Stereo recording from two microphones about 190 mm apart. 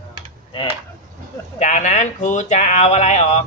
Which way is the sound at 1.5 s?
40° left (ahead or behind).